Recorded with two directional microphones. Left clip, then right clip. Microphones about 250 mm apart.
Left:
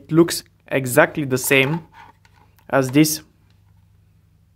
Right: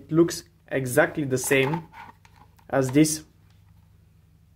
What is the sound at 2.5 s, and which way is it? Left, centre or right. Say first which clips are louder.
Speech: left 5 dB; left.